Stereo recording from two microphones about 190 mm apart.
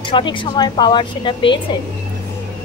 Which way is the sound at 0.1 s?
25° left (ahead or behind).